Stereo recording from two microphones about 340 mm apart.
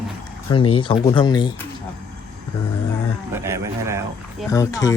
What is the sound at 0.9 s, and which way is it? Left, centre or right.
Speech, centre.